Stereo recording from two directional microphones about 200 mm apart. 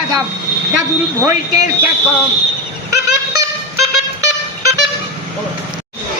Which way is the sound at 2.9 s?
15° right (ahead or behind).